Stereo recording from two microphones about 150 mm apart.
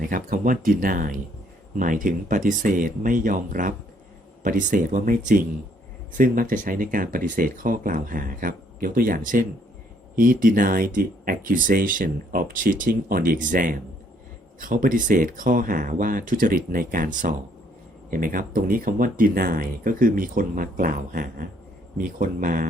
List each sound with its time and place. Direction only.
0.1 s speech: 65° right (ahead or behind)